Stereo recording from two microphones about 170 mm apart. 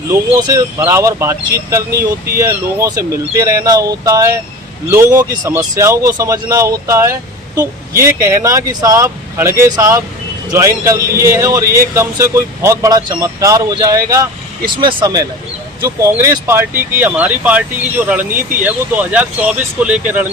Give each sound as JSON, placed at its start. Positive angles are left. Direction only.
{"t": 0.1, "sound": "a man's voice", "side_deg": -15}